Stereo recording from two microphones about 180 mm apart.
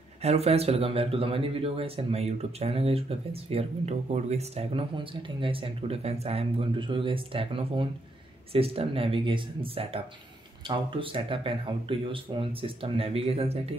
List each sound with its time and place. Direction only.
0.2 s speech: 35° right (ahead or behind)